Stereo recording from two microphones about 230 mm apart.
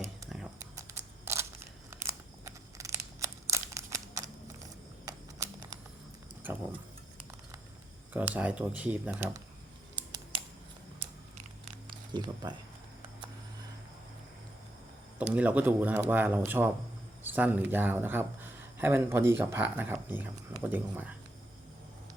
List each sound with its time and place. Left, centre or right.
0.8 s a sound: centre
5.0 s typing: centre
8.3 s speech: centre
12.1 s speech: centre
15.3 s speech: centre